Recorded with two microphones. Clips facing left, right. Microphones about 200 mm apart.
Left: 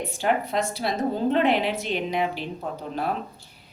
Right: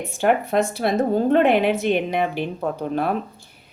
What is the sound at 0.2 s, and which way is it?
A woman's voice, 55° right (ahead or behind).